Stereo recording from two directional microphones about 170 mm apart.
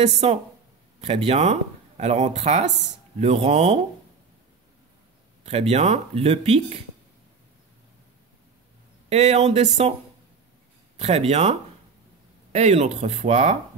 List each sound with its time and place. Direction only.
0.0 s speech: 40° right (ahead or behind)
5.4 s speech: 40° right (ahead or behind)
9.1 s speech: 40° right (ahead or behind)
11.0 s speech: 40° right (ahead or behind)
12.5 s speech: 40° right (ahead or behind)